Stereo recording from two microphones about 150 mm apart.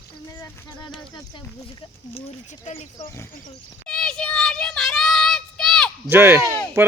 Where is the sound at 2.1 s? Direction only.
45° left (ahead or behind).